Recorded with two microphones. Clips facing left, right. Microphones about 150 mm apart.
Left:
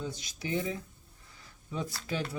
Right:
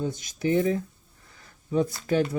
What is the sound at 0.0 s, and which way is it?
Speech, 50° right (ahead or behind).